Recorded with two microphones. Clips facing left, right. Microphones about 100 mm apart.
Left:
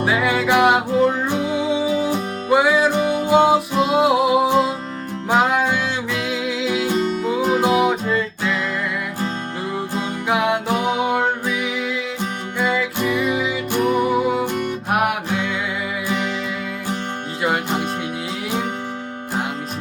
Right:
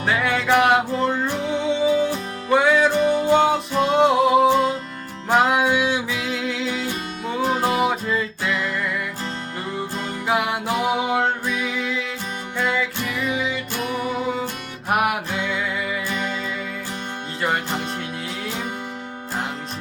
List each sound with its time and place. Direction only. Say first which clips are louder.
0.0 s music: left 3 dB; 5° left (ahead or behind)
5.4 s music: right 1 dB; 5° right (ahead or behind)
10.2 s music: left 3 dB; centre (ahead or behind)
11.4 s music: left 2 dB; 10° left (ahead or behind)
14.8 s music: right 1 dB; centre (ahead or behind)